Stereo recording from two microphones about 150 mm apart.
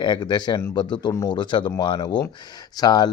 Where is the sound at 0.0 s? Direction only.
30° left (ahead or behind).